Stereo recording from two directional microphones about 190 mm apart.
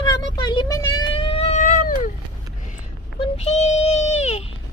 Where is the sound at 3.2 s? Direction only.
35° left (ahead or behind).